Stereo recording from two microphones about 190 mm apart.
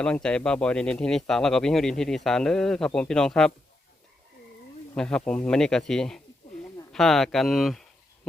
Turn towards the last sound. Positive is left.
turn(degrees=0)  # may be behind; listen again after turning